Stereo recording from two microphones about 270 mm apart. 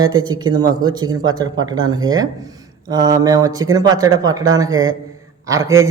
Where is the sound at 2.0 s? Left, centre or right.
Right.